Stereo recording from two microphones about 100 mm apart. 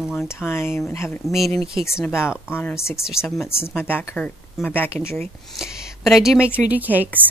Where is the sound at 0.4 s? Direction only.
25° left (ahead or behind).